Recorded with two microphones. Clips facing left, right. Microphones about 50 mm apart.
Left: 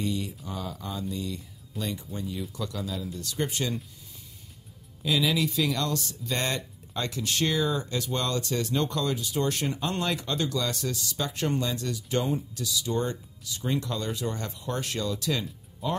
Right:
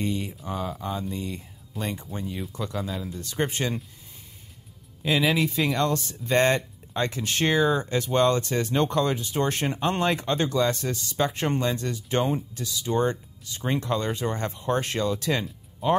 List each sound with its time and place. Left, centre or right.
0.0 s speech: right
5.0 s speech: right